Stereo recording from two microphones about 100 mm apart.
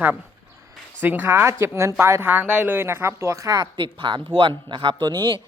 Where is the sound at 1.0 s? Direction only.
20° right (ahead or behind).